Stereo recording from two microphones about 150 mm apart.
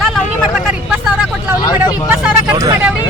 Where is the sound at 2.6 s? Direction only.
20° right (ahead or behind).